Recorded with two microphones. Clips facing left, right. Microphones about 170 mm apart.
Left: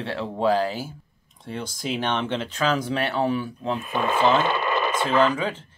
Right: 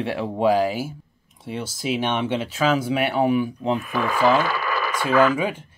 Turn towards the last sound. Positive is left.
turn(degrees=-10)  # may be behind; listen again after turning